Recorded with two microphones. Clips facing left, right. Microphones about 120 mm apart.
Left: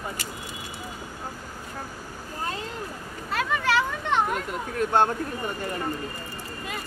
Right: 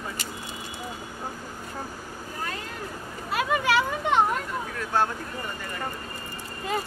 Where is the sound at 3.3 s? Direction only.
10° right (ahead or behind).